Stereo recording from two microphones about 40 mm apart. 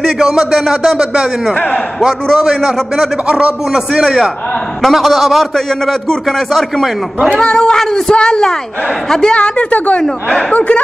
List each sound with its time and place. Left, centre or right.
0.0 s a man's voice: centre
4.8 s a man's voice: centre
7.3 s child singing: centre
9.3 s a woman's voice: left